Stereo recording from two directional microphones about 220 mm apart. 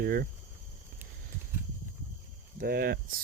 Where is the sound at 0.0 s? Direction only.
40° right (ahead or behind).